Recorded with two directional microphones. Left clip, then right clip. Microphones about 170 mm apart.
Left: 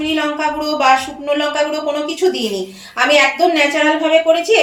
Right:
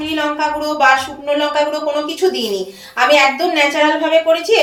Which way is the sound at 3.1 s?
45° left (ahead or behind).